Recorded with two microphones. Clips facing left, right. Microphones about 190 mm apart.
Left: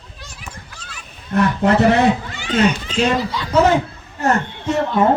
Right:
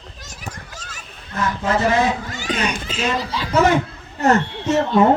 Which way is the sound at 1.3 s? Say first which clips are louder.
Left 6 dB; 65° left (ahead or behind).